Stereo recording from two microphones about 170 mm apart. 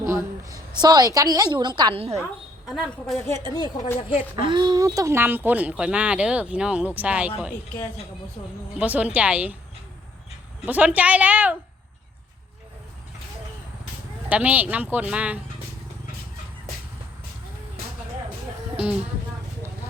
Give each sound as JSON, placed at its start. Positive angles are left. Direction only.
{"t": 0.0, "sound": "a woman's voice", "side_deg": -15}
{"t": 2.6, "sound": "a woman's voice", "side_deg": 0}
{"t": 3.2, "sound": "a woman's voice", "side_deg": 20}
{"t": 4.4, "sound": "speech", "side_deg": -25}
{"t": 8.8, "sound": "speech", "side_deg": -10}
{"t": 10.7, "sound": "speech", "side_deg": -10}
{"t": 14.3, "sound": "speech", "side_deg": -10}